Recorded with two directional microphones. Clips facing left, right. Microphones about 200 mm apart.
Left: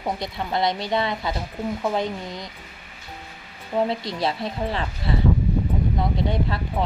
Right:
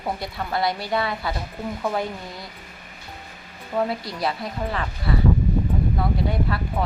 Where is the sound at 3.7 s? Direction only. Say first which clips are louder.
Left 1 dB; 25° left (ahead or behind).